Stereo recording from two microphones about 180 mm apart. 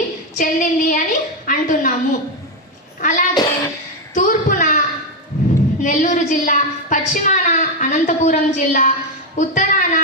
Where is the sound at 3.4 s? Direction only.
20° left (ahead or behind).